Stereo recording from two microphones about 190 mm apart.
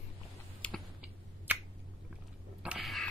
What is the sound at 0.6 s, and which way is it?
Typing, 5° left (ahead or behind).